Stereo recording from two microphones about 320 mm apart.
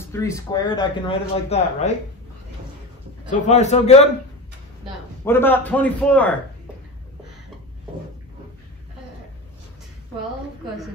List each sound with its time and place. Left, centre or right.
0.1 s speech: centre
3.3 s a man's voice: left
5.2 s a man's voice: centre